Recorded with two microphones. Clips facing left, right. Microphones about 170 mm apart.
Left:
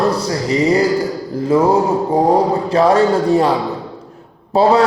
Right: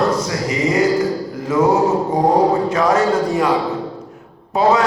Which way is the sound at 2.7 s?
30° left (ahead or behind).